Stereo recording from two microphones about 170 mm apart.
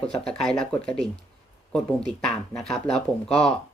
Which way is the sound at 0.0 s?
5° left (ahead or behind).